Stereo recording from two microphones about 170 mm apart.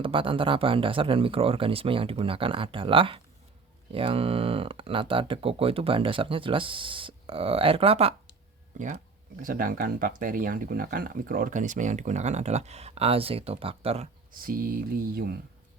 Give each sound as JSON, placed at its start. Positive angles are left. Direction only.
{"t": 0.0, "sound": "speech", "side_deg": -30}
{"t": 9.4, "sound": "speech", "side_deg": -55}
{"t": 14.3, "sound": "a sound", "side_deg": -60}